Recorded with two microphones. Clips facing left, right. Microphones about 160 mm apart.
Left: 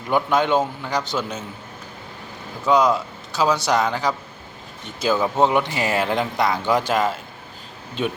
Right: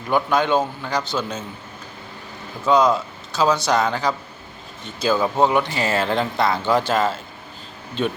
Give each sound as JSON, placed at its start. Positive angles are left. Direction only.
{"t": 0.1, "sound": "speech", "side_deg": 20}
{"t": 2.6, "sound": "speech", "side_deg": 15}